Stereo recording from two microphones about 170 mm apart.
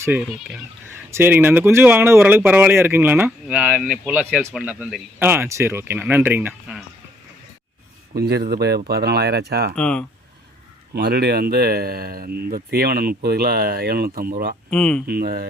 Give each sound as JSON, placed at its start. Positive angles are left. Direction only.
{"t": 0.0, "sound": "speech", "side_deg": -10}
{"t": 5.2, "sound": "speech", "side_deg": -15}
{"t": 8.1, "sound": "speech", "side_deg": -65}
{"t": 9.7, "sound": "speech", "side_deg": 5}
{"t": 10.9, "sound": "speech", "side_deg": -70}
{"t": 14.7, "sound": "speech", "side_deg": 5}
{"t": 15.0, "sound": "speech", "side_deg": -65}